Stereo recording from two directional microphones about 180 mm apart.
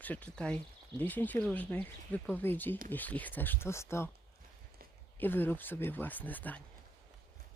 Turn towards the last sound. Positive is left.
turn(degrees=10)  # may be behind; listen again after turning